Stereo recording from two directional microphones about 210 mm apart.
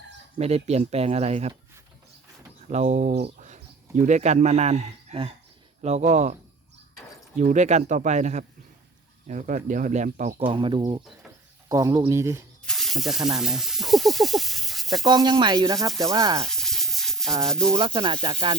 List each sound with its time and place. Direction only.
0.3 s speech: 30° right (ahead or behind)
2.6 s speech: 35° right (ahead or behind)
7.3 s speech: 35° right (ahead or behind)
10.4 s speech: 25° right (ahead or behind)
12.6 s snake: centre (ahead or behind)
14.9 s speech: 20° right (ahead or behind)
16.5 s a sound: centre (ahead or behind)
17.7 s speech: 25° right (ahead or behind)